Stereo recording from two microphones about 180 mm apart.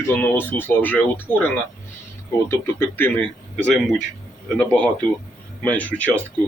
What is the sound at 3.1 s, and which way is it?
Speech, 30° right (ahead or behind).